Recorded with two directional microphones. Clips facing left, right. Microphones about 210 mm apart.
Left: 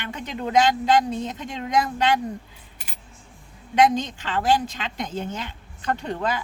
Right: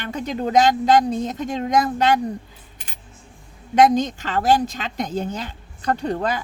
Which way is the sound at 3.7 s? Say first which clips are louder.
Right 4 dB; 45° right (ahead or behind).